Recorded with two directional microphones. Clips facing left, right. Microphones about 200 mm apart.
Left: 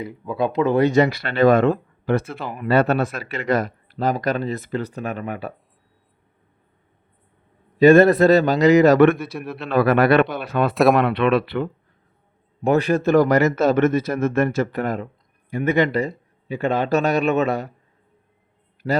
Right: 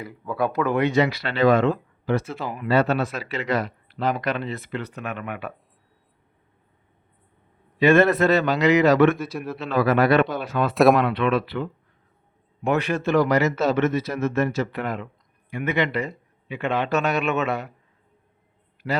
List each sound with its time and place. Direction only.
0.0 s speech: 20° left (ahead or behind)
0.8 s speech: 45° left (ahead or behind)
7.8 s speech: 35° left (ahead or behind); by 11.7 s 60° left (ahead or behind)
12.6 s speech: 35° left (ahead or behind)
18.8 s speech: 30° left (ahead or behind)